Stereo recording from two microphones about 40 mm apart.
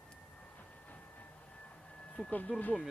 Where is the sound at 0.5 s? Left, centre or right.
Left.